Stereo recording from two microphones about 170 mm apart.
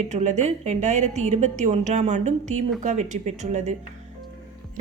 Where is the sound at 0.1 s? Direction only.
45° right (ahead or behind).